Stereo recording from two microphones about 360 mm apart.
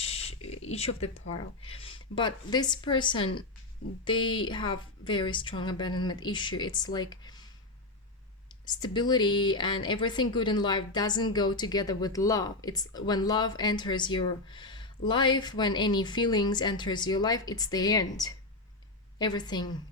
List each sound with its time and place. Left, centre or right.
0.0 s a sound: centre
1.3 s speech: centre
8.6 s speech: centre